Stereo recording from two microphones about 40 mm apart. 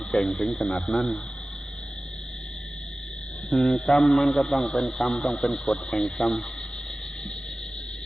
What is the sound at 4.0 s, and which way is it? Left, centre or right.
Speech, centre.